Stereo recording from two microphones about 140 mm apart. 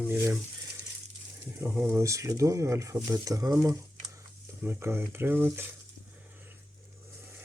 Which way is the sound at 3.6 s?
20° right (ahead or behind).